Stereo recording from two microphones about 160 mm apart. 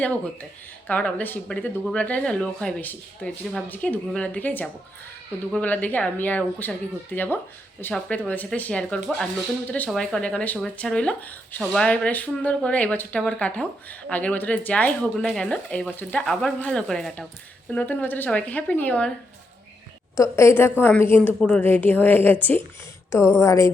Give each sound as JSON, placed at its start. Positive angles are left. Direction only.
{"t": 0.9, "sound": "speech", "side_deg": 10}
{"t": 20.1, "sound": "a woman's voice", "side_deg": 15}